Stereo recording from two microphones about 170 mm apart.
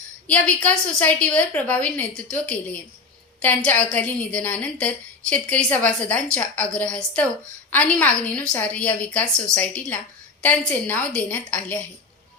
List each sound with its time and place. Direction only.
0.3 s a woman's voice: 5° left (ahead or behind)